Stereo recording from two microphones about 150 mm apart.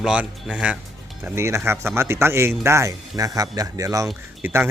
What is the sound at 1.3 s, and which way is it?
Speech, 20° right (ahead or behind).